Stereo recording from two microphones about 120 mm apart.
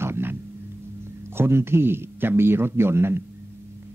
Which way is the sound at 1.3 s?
20° right (ahead or behind).